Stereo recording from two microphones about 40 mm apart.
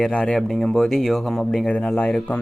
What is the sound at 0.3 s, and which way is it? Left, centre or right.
Speech, centre.